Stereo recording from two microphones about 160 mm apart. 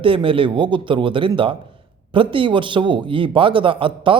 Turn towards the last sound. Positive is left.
turn(degrees=-30)  # may be behind; listen again after turning